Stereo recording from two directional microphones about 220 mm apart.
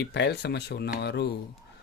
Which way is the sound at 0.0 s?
50° left (ahead or behind).